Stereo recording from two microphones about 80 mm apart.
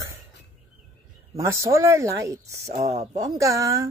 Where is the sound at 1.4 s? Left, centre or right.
Right.